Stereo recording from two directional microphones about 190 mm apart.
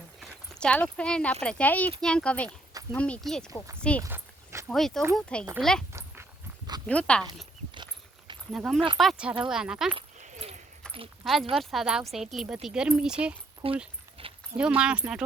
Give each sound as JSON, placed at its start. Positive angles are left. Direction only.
{"t": 0.2, "sound": "speech", "side_deg": 5}
{"t": 4.0, "sound": "a sound", "side_deg": -15}
{"t": 4.7, "sound": "speech", "side_deg": 0}
{"t": 5.9, "sound": "dog", "side_deg": -15}
{"t": 6.8, "sound": "speech", "side_deg": 5}
{"t": 8.5, "sound": "speech", "side_deg": 0}
{"t": 10.2, "sound": "keys jangling", "side_deg": -40}
{"t": 10.8, "sound": "a sound", "side_deg": 5}
{"t": 11.2, "sound": "speech", "side_deg": 0}
{"t": 13.6, "sound": "speech", "side_deg": -30}
{"t": 14.2, "sound": "a sound", "side_deg": -30}
{"t": 14.8, "sound": "speech", "side_deg": -5}